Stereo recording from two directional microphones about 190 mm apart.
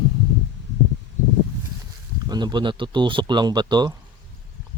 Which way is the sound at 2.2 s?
20° right (ahead or behind).